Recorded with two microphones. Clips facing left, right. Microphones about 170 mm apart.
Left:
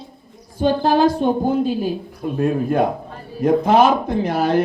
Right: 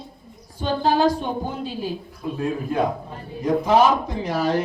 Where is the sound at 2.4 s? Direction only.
55° left (ahead or behind).